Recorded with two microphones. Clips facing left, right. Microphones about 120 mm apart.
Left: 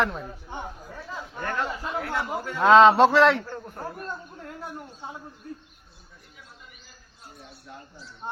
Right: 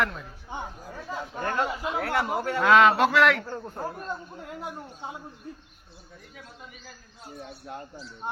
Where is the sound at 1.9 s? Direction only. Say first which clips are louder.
Right 3 dB; 70° right (ahead or behind).